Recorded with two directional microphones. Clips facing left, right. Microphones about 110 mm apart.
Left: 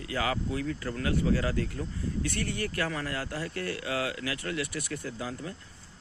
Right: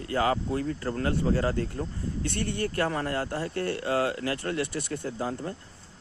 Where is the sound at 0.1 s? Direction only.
35° right (ahead or behind).